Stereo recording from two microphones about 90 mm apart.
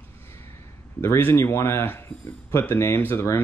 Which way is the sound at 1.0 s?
30° left (ahead or behind).